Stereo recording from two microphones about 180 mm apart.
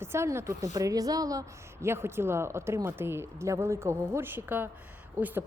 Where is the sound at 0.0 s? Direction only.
15° right (ahead or behind).